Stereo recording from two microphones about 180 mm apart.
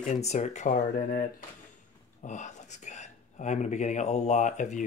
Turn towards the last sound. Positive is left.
turn(degrees=45)  # may be behind; listen again after turning